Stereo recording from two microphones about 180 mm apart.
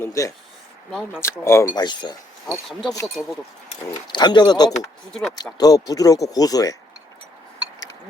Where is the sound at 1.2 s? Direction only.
15° left (ahead or behind).